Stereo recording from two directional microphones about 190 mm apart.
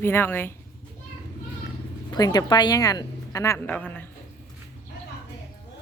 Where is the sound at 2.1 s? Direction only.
20° left (ahead or behind).